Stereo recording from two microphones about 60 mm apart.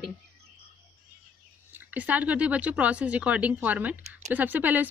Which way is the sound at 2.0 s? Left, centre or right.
Right.